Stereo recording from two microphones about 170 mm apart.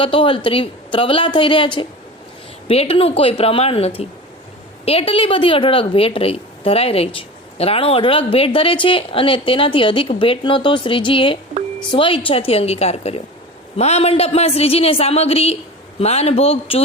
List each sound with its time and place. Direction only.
0.0 s a woman's voice: 30° left (ahead or behind)